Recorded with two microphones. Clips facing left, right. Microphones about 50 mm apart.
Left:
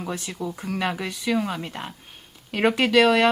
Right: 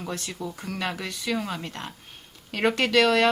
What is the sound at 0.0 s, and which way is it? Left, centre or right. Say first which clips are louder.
Speech: left 3 dB; centre.